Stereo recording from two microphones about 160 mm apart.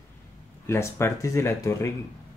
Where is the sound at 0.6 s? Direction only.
15° left (ahead or behind).